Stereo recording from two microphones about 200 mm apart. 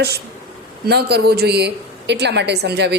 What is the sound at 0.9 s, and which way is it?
A woman's voice, 55° right (ahead or behind).